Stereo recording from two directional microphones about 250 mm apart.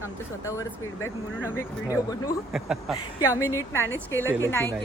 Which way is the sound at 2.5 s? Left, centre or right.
Centre.